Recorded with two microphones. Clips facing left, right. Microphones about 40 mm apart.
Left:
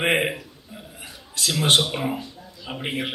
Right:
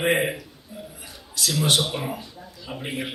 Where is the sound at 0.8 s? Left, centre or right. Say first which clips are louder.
Right 5 dB; left.